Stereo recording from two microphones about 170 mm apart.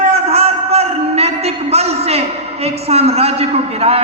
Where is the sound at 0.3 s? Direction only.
35° right (ahead or behind).